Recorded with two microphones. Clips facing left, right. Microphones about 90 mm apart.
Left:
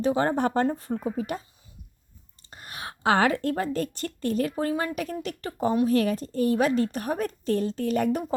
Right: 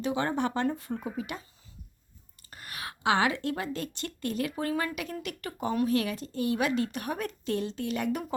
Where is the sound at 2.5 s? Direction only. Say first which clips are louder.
Left 2 dB; 25° left (ahead or behind).